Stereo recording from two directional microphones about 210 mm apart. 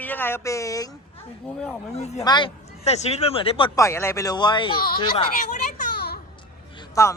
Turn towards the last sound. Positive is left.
turn(degrees=15)  # may be behind; listen again after turning